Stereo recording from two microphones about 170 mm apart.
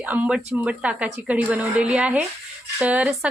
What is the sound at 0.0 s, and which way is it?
Speech, 10° right (ahead or behind).